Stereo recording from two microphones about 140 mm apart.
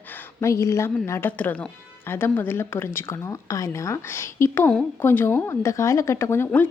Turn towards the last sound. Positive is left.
turn(degrees=15)  # may be behind; listen again after turning